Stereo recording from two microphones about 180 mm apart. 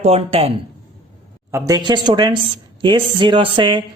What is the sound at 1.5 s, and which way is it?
Speech, 20° right (ahead or behind).